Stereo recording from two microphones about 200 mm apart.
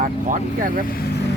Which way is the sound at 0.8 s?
45° left (ahead or behind).